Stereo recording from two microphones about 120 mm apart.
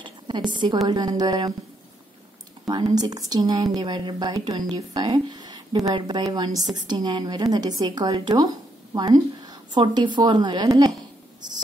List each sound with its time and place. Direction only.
0.0 s a sound: 40° right (ahead or behind)
0.8 s a woman's voice: 35° right (ahead or behind)
2.6 s a woman's voice: 35° right (ahead or behind)